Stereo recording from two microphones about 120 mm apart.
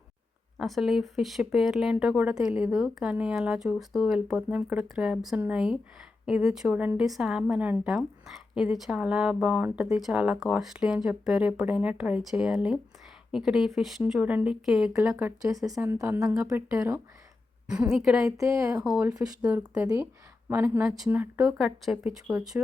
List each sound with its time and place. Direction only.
0.5 s speech: centre (ahead or behind)
15.4 s speech: 30° right (ahead or behind)
15.8 s a woman's voice: 20° right (ahead or behind)
17.9 s speech: 5° right (ahead or behind)
18.3 s a woman's voice: 25° right (ahead or behind)
18.8 s speech: 10° right (ahead or behind)